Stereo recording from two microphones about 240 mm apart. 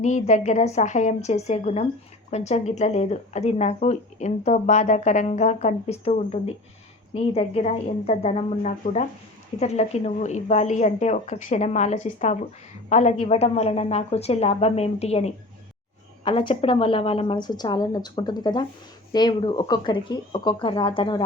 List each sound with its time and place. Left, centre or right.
0.0 s speech: left